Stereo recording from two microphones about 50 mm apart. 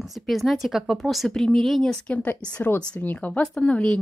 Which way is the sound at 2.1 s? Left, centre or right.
Left.